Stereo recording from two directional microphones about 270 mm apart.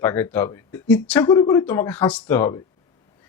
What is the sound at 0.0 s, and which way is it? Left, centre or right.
Speech, centre.